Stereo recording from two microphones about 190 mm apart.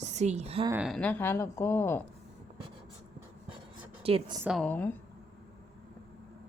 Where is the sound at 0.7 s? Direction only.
5° right (ahead or behind); by 2.0 s 15° left (ahead or behind).